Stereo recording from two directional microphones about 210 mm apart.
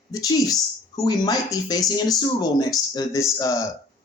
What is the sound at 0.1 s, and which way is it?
Speech, 15° left (ahead or behind).